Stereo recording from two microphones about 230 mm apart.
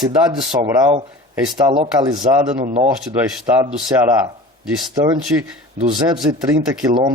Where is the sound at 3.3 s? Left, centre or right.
Centre.